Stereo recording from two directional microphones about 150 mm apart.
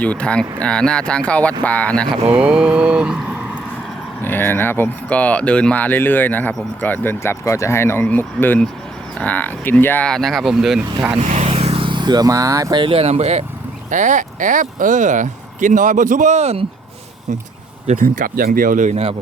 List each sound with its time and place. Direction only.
0.0 s speech: 10° left (ahead or behind)
2.3 s speech: 5° right (ahead or behind)
4.2 s speech: 15° left (ahead or behind); by 10.8 s 5° right (ahead or behind)
11.3 s vehicle: 50° right (ahead or behind); by 12.8 s 25° right (ahead or behind)
12.8 s speech: 40° right (ahead or behind)
17.8 s speech: 60° right (ahead or behind)